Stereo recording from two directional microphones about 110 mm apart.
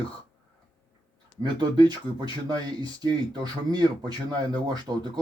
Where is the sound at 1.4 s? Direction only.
40° right (ahead or behind).